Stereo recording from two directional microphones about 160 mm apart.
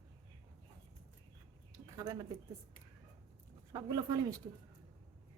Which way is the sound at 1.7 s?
20° right (ahead or behind).